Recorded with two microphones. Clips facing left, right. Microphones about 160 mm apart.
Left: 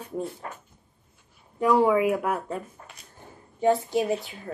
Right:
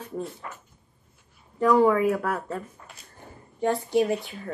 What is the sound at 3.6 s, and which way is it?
Speech, centre (ahead or behind).